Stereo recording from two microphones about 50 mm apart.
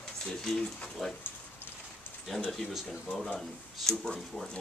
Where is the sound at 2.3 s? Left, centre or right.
Centre.